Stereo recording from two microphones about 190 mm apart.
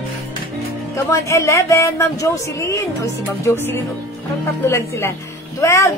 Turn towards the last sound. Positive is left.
turn(degrees=15)  # may be behind; listen again after turning